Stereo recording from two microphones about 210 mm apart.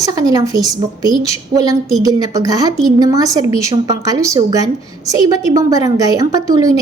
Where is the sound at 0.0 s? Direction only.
15° right (ahead or behind).